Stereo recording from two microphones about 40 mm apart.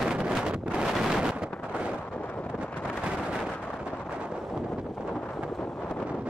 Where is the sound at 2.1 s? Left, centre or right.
Left.